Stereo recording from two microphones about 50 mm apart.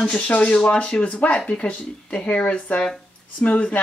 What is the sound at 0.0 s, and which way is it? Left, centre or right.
Speech, left.